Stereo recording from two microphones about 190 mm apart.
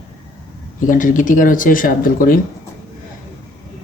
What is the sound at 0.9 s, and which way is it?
Speech, 45° left (ahead or behind).